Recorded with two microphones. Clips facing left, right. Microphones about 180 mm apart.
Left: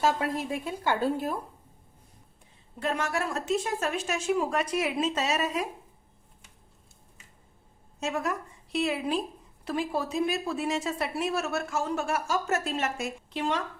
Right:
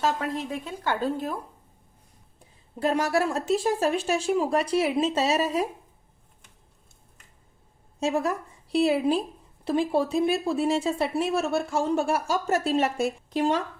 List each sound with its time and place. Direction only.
0.0 s speech: 10° left (ahead or behind)
2.7 s speech: 35° right (ahead or behind)
7.9 s a woman's voice: 30° right (ahead or behind)